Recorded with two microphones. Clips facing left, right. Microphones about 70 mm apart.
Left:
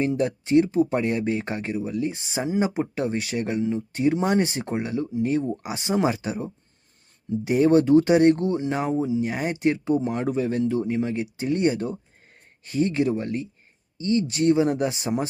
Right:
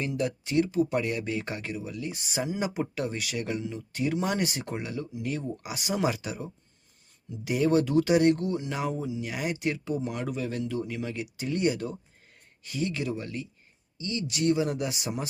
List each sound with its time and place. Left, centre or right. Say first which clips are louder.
0.0 s speech: left 6 dB; left